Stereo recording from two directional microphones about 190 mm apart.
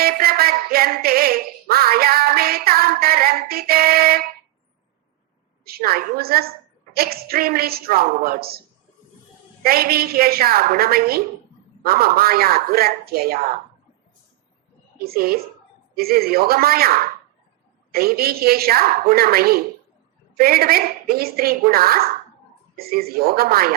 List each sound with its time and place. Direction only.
0.0 s quack: 55° right (ahead or behind)
5.6 s quack: 55° right (ahead or behind)
9.6 s quack: 50° right (ahead or behind)
14.9 s a woman's voice: 55° right (ahead or behind)
16.0 s quack: 55° right (ahead or behind)